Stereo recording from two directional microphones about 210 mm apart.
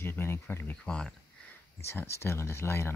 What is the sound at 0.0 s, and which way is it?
Speech, 10° left (ahead or behind).